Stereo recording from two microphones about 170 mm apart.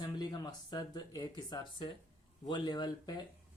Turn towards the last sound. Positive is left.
turn(degrees=25)  # may be behind; listen again after turning